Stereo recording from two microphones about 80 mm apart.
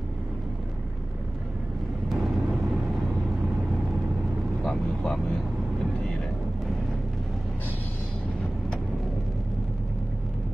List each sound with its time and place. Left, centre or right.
2.1 s vehicle: centre
4.6 s speech: centre